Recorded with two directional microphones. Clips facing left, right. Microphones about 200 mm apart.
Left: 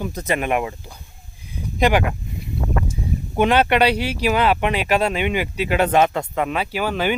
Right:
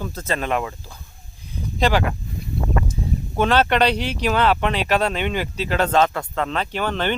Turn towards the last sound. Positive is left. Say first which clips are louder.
# left 1 dB
turn(degrees=10)  # may be behind; listen again after turning